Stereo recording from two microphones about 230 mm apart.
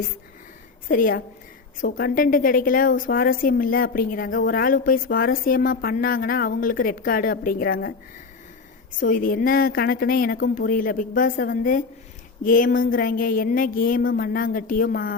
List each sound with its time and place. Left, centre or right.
0.9 s a woman's voice: left
9.0 s a woman's voice: left